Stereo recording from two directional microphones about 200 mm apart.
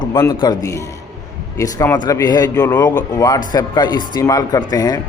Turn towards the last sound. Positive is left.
turn(degrees=20)  # may be behind; listen again after turning